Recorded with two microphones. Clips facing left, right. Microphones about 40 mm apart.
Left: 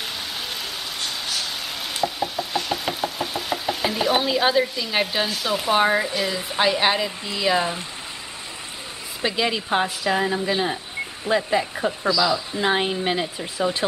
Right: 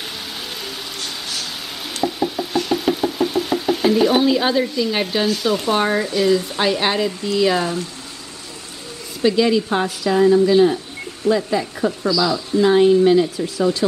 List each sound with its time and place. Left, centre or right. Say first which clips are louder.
1.0 s a sound: left 1 dB; centre
7.2 s speech: right 4 dB; centre
9.2 s a woman's voice: right 8 dB; centre